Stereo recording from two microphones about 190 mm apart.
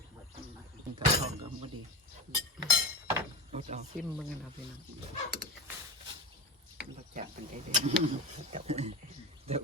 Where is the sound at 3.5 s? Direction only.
35° right (ahead or behind).